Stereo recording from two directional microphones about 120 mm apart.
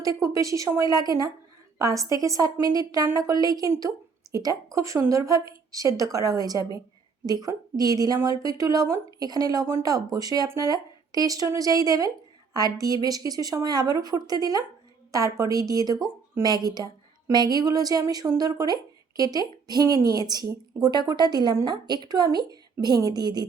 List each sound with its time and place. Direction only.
0.0 s speech: 30° right (ahead or behind)